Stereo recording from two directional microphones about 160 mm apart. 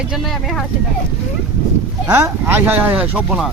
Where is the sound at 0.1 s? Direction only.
Centre (ahead or behind).